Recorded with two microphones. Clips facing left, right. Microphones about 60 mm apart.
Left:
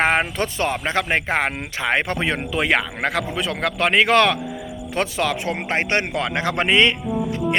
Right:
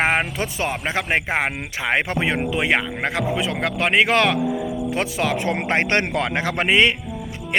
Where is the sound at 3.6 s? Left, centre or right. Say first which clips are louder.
Left 1 dB; centre.